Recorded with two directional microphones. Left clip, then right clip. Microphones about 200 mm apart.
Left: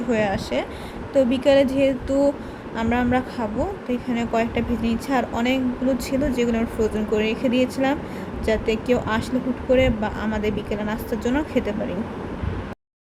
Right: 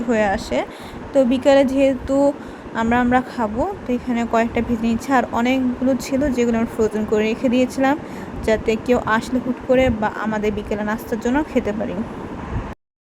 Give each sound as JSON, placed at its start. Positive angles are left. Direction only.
{"t": 0.1, "sound": "speech", "side_deg": -10}